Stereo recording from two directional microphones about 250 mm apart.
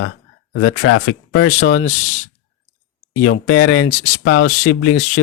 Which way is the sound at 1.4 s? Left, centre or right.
Left.